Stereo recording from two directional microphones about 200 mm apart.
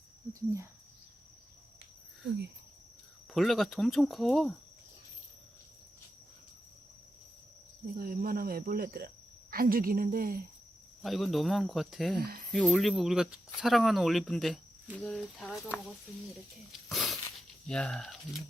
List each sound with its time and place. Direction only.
0.3 s speech: 15° right (ahead or behind)
3.3 s speech: centre (ahead or behind)
7.9 s cricket: 45° right (ahead or behind)
11.0 s speech: centre (ahead or behind)
16.9 s a sound: centre (ahead or behind)
17.7 s speech: 5° left (ahead or behind)